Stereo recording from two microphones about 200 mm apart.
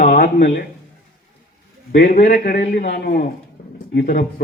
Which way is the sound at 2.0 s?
35° left (ahead or behind).